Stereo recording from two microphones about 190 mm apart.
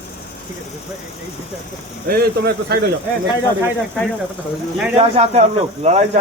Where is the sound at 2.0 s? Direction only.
55° right (ahead or behind).